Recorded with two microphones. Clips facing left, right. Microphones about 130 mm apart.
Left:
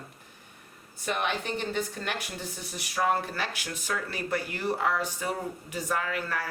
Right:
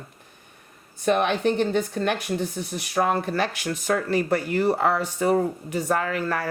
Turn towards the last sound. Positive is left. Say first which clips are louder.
# right 6 dB
turn(degrees=-50)  # may be behind; listen again after turning